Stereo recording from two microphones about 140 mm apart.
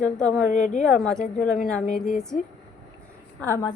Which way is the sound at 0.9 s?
5° left (ahead or behind).